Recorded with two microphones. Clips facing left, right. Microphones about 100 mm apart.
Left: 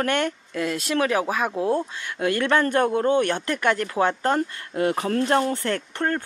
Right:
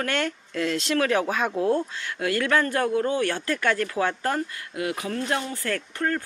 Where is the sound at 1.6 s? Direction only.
20° left (ahead or behind).